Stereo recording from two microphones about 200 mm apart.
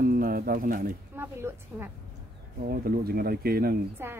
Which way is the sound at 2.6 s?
45° right (ahead or behind).